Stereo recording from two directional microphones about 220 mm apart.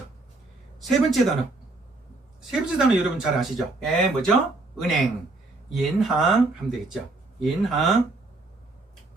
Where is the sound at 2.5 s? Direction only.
Centre (ahead or behind).